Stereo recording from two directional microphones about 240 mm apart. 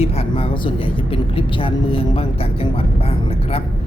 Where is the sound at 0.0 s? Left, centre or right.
Left.